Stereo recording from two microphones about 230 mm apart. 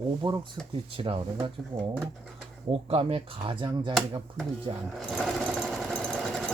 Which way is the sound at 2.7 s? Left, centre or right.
Right.